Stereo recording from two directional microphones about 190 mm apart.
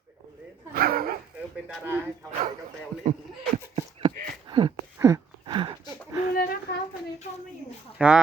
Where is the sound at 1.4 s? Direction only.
5° right (ahead or behind).